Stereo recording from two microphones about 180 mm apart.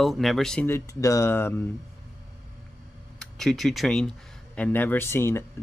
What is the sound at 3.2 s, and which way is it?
Speech, centre (ahead or behind).